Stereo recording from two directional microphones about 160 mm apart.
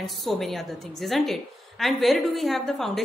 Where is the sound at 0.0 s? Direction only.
Centre (ahead or behind).